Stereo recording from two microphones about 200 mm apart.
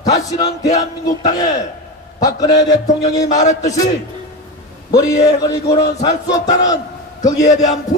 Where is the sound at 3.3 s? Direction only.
35° left (ahead or behind).